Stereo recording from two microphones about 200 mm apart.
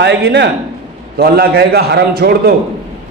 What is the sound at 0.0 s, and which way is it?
A man's voice, 60° right (ahead or behind).